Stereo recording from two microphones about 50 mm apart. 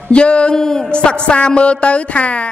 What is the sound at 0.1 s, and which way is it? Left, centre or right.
A man's voice, left.